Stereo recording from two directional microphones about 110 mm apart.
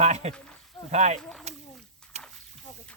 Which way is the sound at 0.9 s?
90° right.